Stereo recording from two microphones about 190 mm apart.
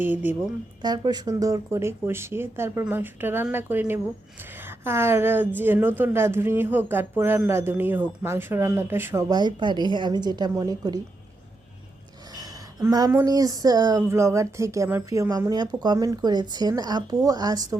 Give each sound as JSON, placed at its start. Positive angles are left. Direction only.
{"t": 0.0, "sound": "a woman's voice", "side_deg": -10}
{"t": 0.8, "sound": "a woman's voice", "side_deg": -20}
{"t": 12.3, "sound": "speech", "side_deg": -20}